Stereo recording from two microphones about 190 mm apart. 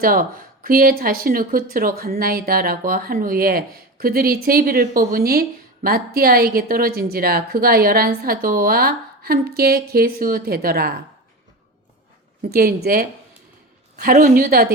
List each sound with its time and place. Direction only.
0.0 s speech: 50° right (ahead or behind)
12.5 s speech: 55° right (ahead or behind)